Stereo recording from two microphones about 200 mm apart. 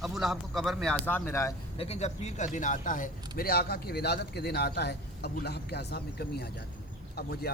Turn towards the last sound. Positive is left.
turn(degrees=50)  # may be behind; listen again after turning